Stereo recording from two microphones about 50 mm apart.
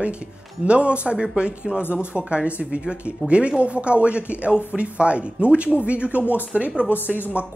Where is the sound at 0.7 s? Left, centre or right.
Right.